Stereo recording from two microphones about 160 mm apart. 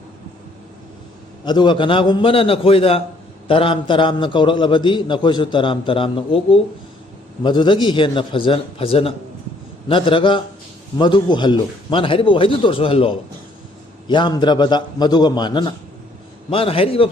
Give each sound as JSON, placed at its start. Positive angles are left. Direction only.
{"t": 1.5, "sound": "a man's voice", "side_deg": 30}